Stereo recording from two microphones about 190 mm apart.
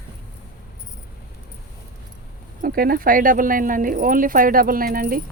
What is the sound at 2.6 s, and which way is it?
Speech, 50° right (ahead or behind).